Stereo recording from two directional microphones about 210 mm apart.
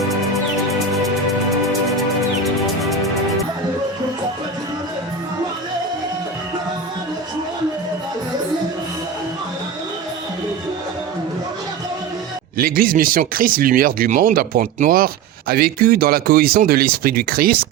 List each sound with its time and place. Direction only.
2.0 s music: centre (ahead or behind)
12.5 s speech: 45° right (ahead or behind)